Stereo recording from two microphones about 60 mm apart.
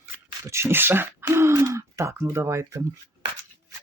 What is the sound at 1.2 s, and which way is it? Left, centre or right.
Speech, right.